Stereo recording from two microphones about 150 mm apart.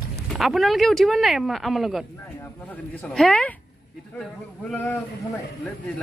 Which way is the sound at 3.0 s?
5° left (ahead or behind).